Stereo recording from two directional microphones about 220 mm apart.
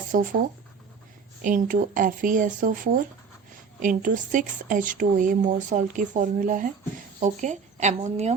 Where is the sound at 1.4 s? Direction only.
35° right (ahead or behind).